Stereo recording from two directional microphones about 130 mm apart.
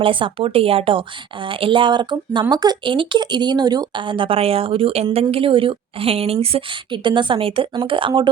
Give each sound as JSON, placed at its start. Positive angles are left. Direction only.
{"t": 0.0, "sound": "a woman's voice", "side_deg": -40}